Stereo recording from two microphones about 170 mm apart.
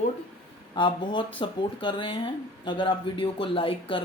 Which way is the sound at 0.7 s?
30° left (ahead or behind).